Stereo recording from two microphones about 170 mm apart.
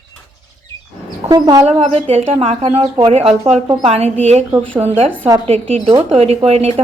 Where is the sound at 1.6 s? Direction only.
40° right (ahead or behind).